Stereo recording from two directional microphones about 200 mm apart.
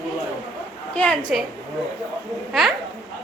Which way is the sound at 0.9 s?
5° left (ahead or behind).